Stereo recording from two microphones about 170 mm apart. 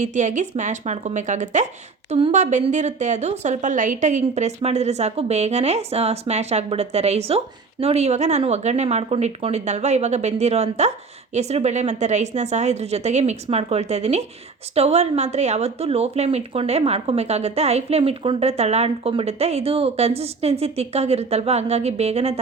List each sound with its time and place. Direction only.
0.0 s a woman's voice: 45° right (ahead or behind)